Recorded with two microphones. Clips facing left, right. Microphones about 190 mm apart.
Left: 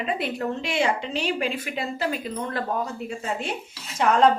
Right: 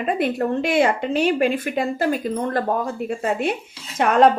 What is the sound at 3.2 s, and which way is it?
A woman's voice, 60° right (ahead or behind).